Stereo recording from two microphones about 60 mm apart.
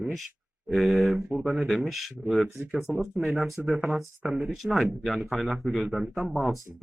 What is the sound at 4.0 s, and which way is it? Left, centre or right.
Speech, centre.